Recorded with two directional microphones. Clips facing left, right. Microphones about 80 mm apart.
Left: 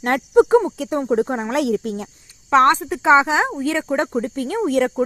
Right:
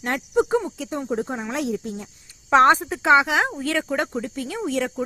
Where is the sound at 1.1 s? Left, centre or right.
Left.